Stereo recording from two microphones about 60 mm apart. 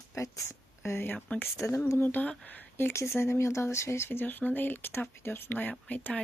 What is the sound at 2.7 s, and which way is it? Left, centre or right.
Speech, left.